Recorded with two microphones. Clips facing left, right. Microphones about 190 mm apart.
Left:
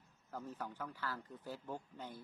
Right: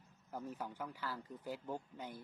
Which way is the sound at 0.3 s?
15° right (ahead or behind).